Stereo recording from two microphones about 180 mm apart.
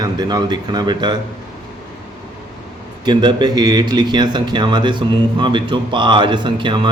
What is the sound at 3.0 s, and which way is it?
Speech, 25° right (ahead or behind).